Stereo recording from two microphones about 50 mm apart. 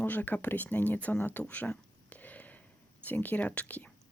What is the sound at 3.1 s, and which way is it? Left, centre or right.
Speech, left.